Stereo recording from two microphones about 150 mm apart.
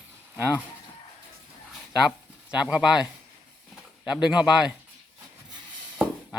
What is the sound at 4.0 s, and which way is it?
Speech, 5° right (ahead or behind).